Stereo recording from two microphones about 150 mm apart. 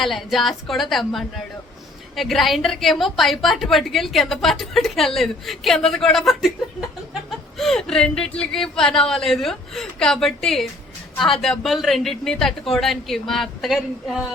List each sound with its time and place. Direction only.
0.0 s a woman's voice: centre (ahead or behind)